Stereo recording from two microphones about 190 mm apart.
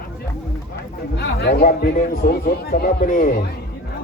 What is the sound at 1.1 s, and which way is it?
A man's voice, 60° left (ahead or behind).